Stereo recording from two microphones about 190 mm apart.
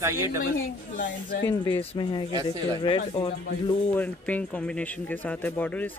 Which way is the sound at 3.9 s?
10° left (ahead or behind).